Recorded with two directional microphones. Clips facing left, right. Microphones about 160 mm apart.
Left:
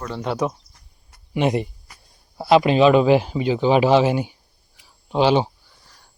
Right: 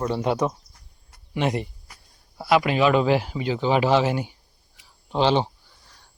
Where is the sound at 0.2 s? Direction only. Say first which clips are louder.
Left 4 dB; centre (ahead or behind).